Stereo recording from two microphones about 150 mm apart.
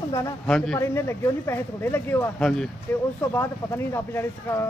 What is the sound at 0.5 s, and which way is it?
Speech, 5° left (ahead or behind).